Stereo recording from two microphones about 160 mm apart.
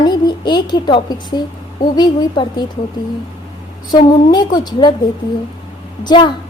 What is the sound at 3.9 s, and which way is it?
A woman's voice, 25° left (ahead or behind).